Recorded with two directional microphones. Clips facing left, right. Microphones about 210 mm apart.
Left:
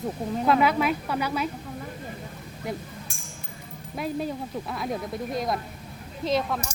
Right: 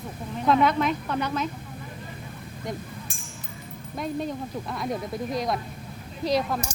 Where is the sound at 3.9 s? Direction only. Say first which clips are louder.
Even; 5° left (ahead or behind).